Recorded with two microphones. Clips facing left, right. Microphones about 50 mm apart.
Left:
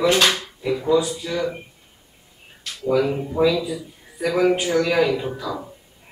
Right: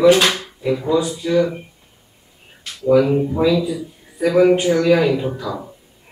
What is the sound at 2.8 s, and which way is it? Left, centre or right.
Speech, centre.